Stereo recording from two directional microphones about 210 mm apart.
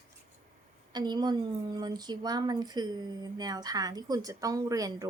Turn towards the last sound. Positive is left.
turn(degrees=-15)  # may be behind; listen again after turning